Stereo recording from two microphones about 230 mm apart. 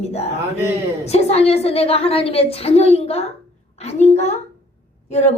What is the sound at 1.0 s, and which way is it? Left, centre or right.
A woman's voice, left.